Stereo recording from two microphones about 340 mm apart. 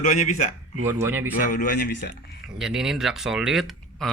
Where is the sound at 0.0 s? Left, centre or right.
Left.